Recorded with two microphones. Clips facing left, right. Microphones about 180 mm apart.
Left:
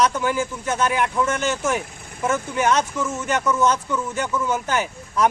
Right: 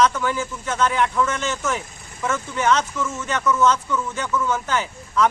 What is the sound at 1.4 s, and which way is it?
Speech, 50° left (ahead or behind).